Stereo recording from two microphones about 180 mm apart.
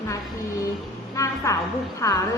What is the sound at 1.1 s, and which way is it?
A woman's voice, 15° left (ahead or behind).